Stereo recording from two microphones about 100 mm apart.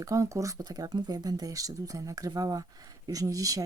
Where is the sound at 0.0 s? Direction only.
35° right (ahead or behind).